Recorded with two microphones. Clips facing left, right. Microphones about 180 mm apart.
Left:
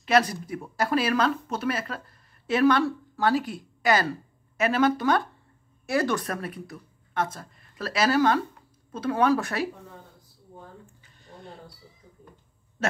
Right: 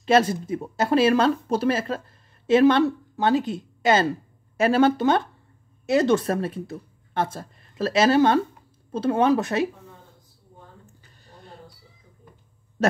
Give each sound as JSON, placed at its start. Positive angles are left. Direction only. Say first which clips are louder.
{"t": 0.0, "sound": "speech", "louder": "right 4 dB", "side_deg": -25}